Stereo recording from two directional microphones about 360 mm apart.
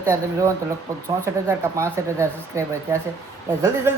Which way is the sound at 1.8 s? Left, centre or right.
Centre.